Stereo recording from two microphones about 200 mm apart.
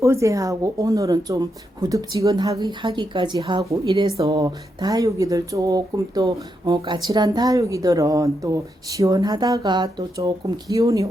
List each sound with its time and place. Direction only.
0.0 s speech: 15° right (ahead or behind)